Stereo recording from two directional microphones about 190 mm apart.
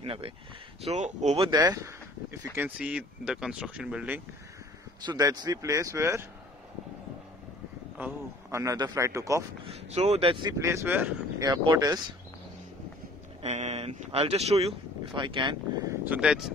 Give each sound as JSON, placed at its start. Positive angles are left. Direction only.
{"t": 0.0, "sound": "speech", "side_deg": -30}
{"t": 1.6, "sound": "a man's voice", "side_deg": -15}
{"t": 5.0, "sound": "a man's voice", "side_deg": -20}
{"t": 8.0, "sound": "a man's voice", "side_deg": -15}
{"t": 9.7, "sound": "speech", "side_deg": -35}
{"t": 10.6, "sound": "speech", "side_deg": -15}
{"t": 13.4, "sound": "speech", "side_deg": -35}
{"t": 16.0, "sound": "speech", "side_deg": -5}